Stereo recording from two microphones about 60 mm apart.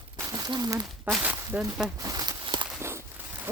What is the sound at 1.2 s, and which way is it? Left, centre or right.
Speech, right.